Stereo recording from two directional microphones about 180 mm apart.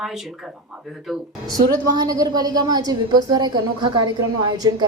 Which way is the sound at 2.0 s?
20° right (ahead or behind).